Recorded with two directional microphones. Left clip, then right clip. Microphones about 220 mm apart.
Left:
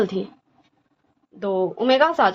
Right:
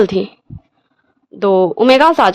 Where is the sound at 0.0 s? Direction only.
50° right (ahead or behind).